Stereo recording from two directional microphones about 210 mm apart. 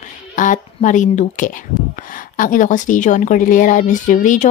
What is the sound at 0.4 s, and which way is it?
Speech, 40° left (ahead or behind).